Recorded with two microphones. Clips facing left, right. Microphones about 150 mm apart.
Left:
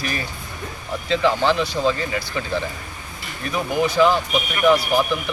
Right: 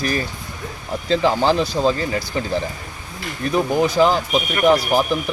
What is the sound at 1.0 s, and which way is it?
Speech, 35° right (ahead or behind).